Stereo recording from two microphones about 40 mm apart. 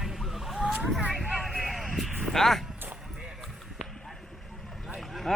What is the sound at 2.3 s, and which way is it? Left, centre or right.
Speech, centre.